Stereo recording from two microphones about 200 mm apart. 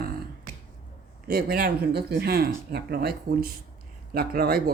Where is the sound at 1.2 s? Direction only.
50° right (ahead or behind).